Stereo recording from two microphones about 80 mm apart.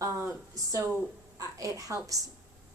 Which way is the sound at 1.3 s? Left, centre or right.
Right.